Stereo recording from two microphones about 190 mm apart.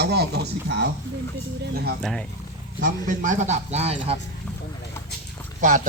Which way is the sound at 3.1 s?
40° right (ahead or behind).